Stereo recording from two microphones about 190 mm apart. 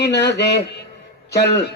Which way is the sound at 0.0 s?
60° left (ahead or behind).